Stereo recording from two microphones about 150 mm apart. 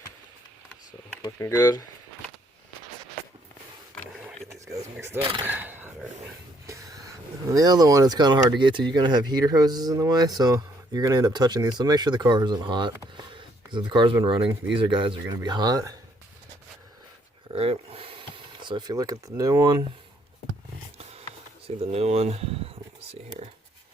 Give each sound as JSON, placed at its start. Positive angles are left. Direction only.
{"t": 1.2, "sound": "speech", "side_deg": 20}
{"t": 4.6, "sound": "vehicle", "side_deg": -20}
{"t": 5.4, "sound": "speech", "side_deg": -10}
{"t": 17.5, "sound": "a sound", "side_deg": -40}
{"t": 21.0, "sound": "a sound", "side_deg": -45}
{"t": 21.9, "sound": "speech", "side_deg": -45}